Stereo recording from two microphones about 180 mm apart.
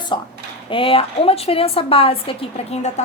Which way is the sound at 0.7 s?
30° left (ahead or behind).